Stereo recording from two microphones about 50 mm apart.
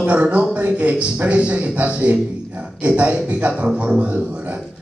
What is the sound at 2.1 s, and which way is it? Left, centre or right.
Speech, right.